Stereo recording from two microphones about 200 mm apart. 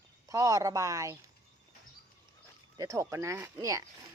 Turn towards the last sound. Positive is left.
turn(degrees=-15)  # may be behind; listen again after turning